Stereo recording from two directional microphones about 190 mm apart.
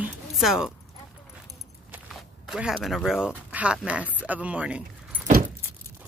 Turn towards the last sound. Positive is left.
turn(degrees=-5)  # may be behind; listen again after turning